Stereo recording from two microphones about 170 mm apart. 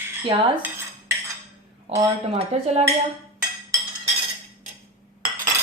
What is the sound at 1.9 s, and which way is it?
Speech, 35° right (ahead or behind).